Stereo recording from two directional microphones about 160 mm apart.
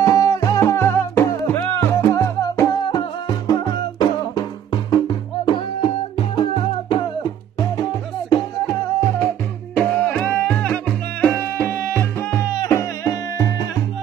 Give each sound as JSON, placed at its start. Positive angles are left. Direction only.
{"t": 0.0, "sound": "music", "side_deg": 20}
{"t": 9.8, "sound": "music", "side_deg": 10}